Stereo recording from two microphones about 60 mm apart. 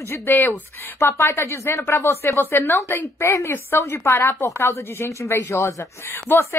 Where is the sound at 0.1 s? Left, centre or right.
Left.